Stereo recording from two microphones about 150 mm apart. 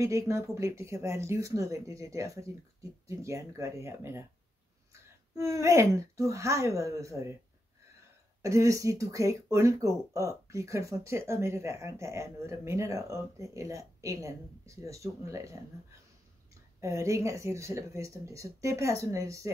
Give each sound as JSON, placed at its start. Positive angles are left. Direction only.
{"t": 0.0, "sound": "speech", "side_deg": -20}
{"t": 5.3, "sound": "speech", "side_deg": -20}
{"t": 8.4, "sound": "speech", "side_deg": -20}
{"t": 16.8, "sound": "speech", "side_deg": -20}